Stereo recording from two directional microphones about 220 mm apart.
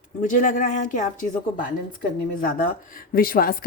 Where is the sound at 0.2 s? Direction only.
35° left (ahead or behind).